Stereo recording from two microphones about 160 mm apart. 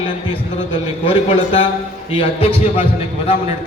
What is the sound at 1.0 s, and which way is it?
A man's voice, 35° left (ahead or behind).